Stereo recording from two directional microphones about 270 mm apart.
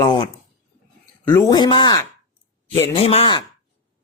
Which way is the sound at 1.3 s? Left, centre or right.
Centre.